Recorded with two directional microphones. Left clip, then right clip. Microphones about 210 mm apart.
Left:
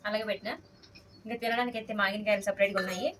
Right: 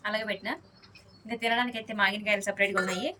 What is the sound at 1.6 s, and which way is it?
A woman's voice, 10° left (ahead or behind).